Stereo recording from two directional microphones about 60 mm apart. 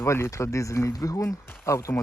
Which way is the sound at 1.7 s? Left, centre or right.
Left.